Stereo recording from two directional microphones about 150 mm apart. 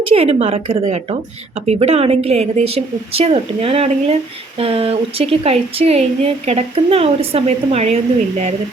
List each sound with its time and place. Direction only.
0.1 s speech: 45° right (ahead or behind)